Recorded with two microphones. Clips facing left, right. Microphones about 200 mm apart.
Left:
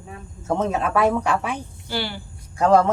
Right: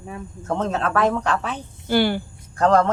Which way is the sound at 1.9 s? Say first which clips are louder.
Right 10 dB; 50° right (ahead or behind).